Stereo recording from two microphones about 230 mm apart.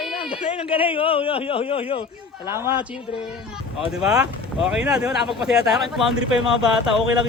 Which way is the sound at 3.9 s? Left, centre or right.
Centre.